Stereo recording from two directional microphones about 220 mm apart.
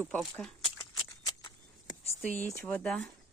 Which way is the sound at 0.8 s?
20° left (ahead or behind).